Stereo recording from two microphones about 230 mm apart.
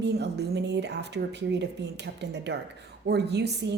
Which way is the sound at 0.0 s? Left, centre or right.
Right.